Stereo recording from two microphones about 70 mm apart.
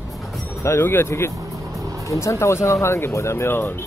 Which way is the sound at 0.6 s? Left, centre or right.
Left.